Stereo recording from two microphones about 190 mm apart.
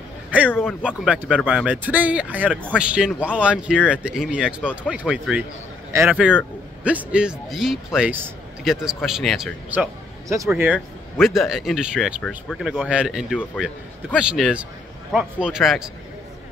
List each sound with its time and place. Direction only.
0.5 s a man's voice: 10° left (ahead or behind)
0.8 s speech: 5° right (ahead or behind)
10.2 s speech: 15° right (ahead or behind)